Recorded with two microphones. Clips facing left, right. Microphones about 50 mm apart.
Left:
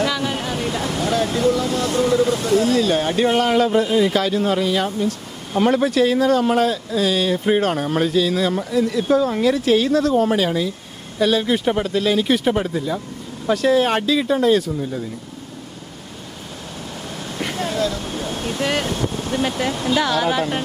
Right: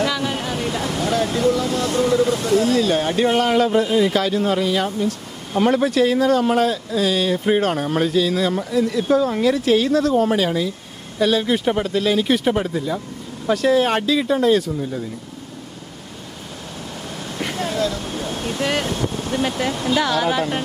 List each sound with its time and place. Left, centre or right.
0.0 s waterfall: left
5.5 s speech: left
17.2 s speech: left